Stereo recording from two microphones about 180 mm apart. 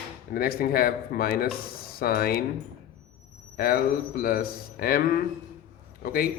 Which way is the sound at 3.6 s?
55° left (ahead or behind).